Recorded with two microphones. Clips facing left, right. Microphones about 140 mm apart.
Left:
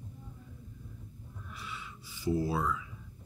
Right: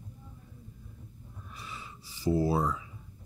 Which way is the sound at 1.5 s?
35° right (ahead or behind).